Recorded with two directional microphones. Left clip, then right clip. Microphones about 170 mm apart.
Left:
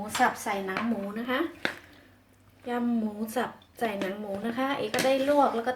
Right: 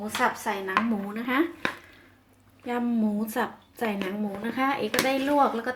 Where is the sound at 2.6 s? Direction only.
50° right (ahead or behind).